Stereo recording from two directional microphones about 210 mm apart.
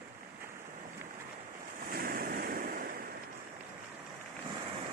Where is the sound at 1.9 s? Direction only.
45° right (ahead or behind).